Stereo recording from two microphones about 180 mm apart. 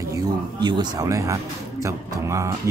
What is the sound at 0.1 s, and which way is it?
Speech, 25° right (ahead or behind).